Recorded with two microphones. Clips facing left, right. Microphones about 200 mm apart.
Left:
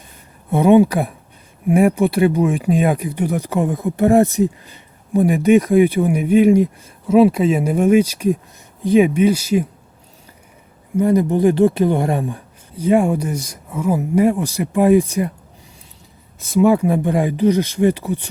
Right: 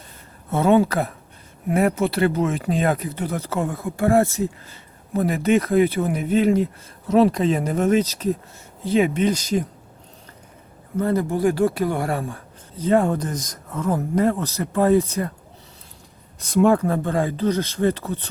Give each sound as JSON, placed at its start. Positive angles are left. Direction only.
{"t": 0.5, "sound": "speech", "side_deg": 15}
{"t": 10.9, "sound": "speech", "side_deg": 15}
{"t": 16.4, "sound": "speech", "side_deg": 5}